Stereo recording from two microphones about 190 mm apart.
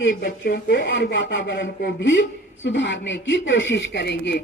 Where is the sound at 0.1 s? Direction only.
50° left (ahead or behind).